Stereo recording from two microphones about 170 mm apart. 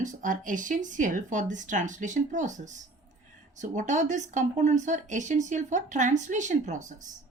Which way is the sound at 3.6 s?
45° right (ahead or behind).